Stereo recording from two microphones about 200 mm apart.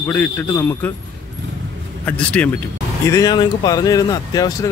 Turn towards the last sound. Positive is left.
turn(degrees=20)  # may be behind; listen again after turning